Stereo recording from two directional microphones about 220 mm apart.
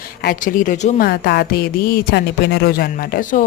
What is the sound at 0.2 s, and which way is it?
A woman's voice, 40° left (ahead or behind).